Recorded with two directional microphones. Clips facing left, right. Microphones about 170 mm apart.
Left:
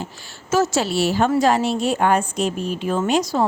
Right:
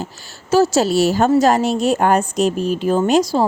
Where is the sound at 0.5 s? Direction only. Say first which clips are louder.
Right 5 dB; 35° right (ahead or behind).